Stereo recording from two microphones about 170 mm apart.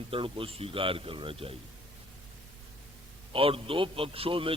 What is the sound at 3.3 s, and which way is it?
A man's voice, 30° right (ahead or behind).